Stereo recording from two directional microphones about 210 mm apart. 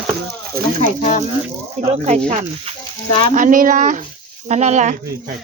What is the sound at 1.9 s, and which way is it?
Speech, 30° right (ahead or behind).